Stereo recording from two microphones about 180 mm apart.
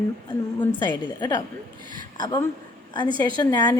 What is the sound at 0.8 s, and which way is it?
Speech, 25° left (ahead or behind).